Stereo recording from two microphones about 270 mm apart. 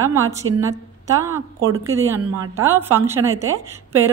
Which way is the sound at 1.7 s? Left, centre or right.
Right.